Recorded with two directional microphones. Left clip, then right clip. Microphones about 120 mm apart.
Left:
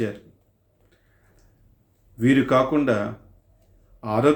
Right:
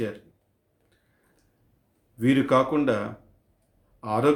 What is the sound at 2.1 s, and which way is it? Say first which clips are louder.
Speech: left 2 dB; 20° right (ahead or behind).